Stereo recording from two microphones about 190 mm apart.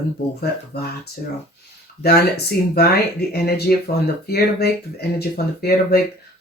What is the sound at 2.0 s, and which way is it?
Speech, 55° left (ahead or behind).